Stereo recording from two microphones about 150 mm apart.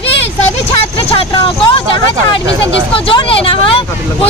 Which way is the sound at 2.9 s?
35° left (ahead or behind).